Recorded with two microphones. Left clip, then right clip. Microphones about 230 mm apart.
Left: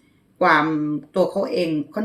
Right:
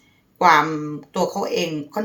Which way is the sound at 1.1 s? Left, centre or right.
Right.